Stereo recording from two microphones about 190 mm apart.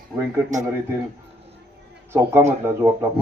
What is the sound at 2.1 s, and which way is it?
Speech, 15° right (ahead or behind).